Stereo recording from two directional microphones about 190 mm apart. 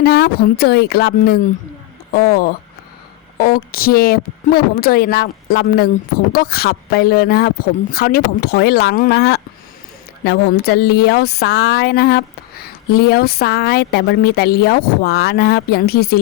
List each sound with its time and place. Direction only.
0.0 s speech: 55° left (ahead or behind)